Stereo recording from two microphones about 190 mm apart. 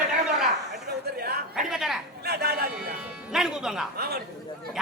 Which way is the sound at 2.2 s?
55° right (ahead or behind).